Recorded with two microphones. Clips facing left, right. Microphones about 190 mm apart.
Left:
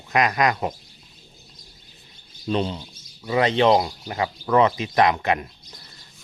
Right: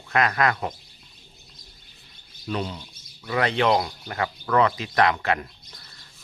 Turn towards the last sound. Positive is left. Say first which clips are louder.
# left 2 dB
turn(degrees=20)  # may be behind; listen again after turning